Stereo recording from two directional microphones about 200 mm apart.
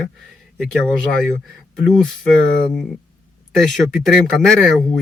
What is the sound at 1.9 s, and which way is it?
Speech, centre (ahead or behind).